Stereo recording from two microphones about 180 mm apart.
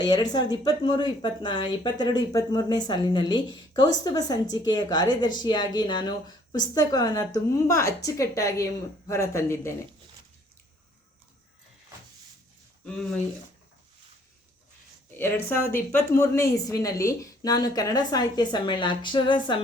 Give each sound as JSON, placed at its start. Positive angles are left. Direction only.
{"t": 0.0, "sound": "speech", "side_deg": 20}
{"t": 15.1, "sound": "speech", "side_deg": 10}